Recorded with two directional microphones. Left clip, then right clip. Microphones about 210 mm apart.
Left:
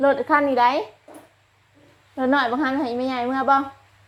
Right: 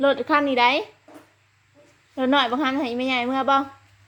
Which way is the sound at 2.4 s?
10° right (ahead or behind).